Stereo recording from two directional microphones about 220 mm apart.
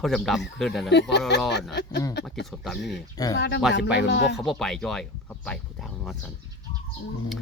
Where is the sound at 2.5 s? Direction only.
Centre (ahead or behind).